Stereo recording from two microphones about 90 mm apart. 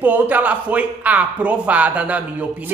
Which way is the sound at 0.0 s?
20° right (ahead or behind).